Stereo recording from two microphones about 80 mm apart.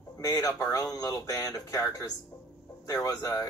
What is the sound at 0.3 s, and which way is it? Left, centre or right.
Speech, left.